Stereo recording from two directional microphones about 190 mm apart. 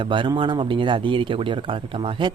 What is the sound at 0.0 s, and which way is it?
Speech, 25° right (ahead or behind).